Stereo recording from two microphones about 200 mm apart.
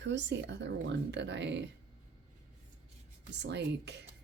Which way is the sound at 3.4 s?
60° right (ahead or behind).